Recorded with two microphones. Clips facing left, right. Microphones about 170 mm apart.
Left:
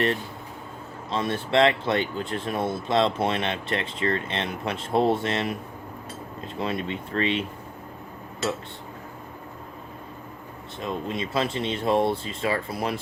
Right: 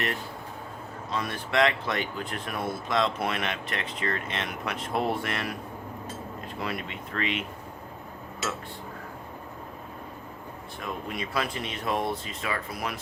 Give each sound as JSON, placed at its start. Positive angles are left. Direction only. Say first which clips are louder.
{"t": 1.1, "sound": "speech", "louder": "left 5 dB", "side_deg": 25}
{"t": 6.6, "sound": "speech", "louder": "left 6 dB", "side_deg": 25}
{"t": 10.8, "sound": "speech", "louder": "left 5 dB", "side_deg": 25}